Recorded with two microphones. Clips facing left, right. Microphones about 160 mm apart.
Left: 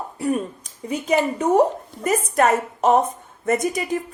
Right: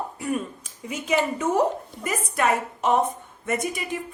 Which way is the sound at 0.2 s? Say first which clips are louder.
Left 7 dB; 35° left (ahead or behind).